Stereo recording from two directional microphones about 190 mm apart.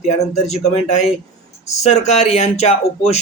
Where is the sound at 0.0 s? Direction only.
35° left (ahead or behind).